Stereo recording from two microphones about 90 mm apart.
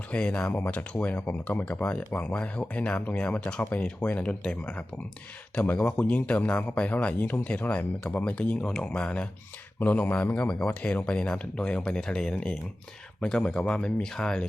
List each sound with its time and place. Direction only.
0.1 s speech: 15° left (ahead or behind)